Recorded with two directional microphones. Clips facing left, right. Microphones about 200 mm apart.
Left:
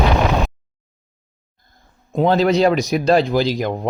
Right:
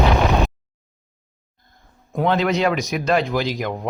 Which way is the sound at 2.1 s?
35° left (ahead or behind).